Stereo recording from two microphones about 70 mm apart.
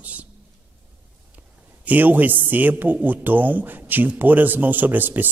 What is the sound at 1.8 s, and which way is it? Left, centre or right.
A man's voice, right.